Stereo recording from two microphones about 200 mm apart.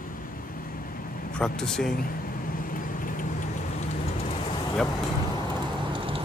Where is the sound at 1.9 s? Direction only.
45° left (ahead or behind).